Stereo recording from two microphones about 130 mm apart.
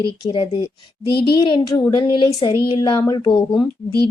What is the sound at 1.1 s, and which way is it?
A woman's voice, 35° left (ahead or behind).